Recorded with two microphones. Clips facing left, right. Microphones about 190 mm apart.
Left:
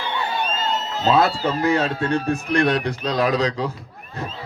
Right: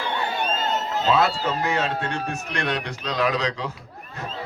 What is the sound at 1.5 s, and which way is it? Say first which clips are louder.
A man's voice: left 4 dB; 35° left (ahead or behind).